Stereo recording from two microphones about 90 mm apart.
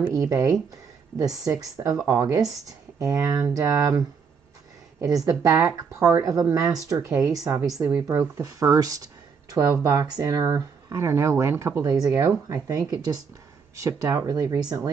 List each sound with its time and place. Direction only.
0.1 s speech: 35° right (ahead or behind)
5.0 s speech: 40° right (ahead or behind)
7.8 s speech: 25° right (ahead or behind)
11.8 s speech: 45° right (ahead or behind)